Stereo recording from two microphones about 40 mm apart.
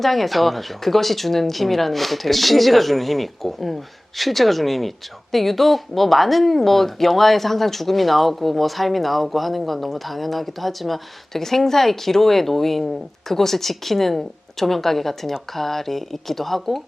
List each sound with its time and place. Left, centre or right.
0.0 s speech: centre